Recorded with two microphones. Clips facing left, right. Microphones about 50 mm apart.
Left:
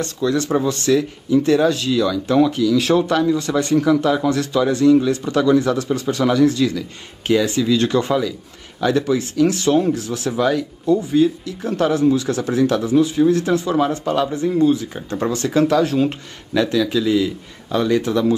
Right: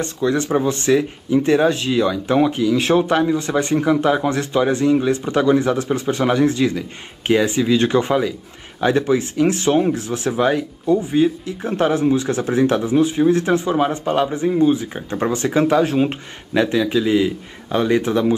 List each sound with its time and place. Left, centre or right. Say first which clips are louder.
0.0 s speech: even; right